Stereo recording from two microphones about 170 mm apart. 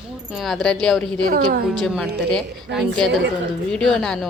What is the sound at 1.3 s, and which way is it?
Speech, 55° right (ahead or behind).